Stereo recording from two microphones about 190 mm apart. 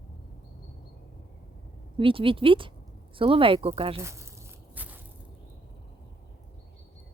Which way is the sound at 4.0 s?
15° right (ahead or behind).